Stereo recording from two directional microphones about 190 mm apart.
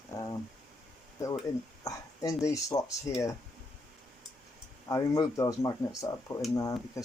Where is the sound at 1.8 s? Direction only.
15° left (ahead or behind).